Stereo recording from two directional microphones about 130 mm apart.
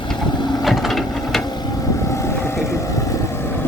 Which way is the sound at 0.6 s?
Centre (ahead or behind).